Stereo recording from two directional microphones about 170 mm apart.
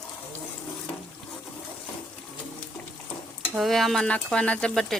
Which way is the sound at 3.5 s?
Centre (ahead or behind).